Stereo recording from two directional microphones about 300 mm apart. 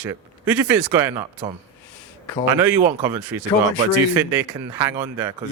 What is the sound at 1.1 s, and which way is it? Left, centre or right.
Speech, centre.